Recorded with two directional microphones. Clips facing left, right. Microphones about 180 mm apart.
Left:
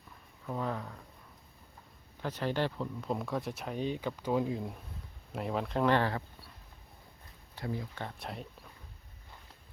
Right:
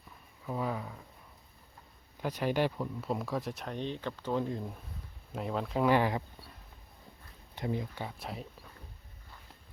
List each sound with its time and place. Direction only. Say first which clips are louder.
0.4 s speech: right 1 dB; 5° right (ahead or behind)
2.2 s speech: right 2 dB; 15° right (ahead or behind)
7.5 s speech: right 3 dB; 20° right (ahead or behind)
8.0 s speech: right 1 dB; centre (ahead or behind)